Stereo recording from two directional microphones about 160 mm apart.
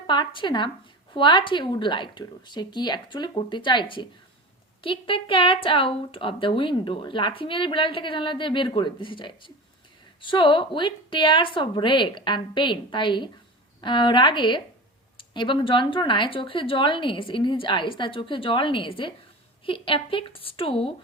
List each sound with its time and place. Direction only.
0.1 s a woman's voice: 30° left (ahead or behind)